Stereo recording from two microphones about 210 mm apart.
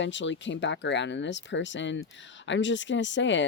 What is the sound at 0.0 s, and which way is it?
Speech, 60° left (ahead or behind).